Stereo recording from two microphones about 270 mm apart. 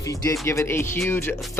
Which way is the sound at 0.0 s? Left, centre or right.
Centre.